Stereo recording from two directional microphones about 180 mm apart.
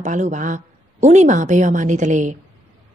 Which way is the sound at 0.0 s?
45° right (ahead or behind).